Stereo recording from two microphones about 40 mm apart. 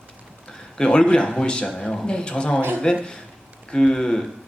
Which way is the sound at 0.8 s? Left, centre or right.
Left.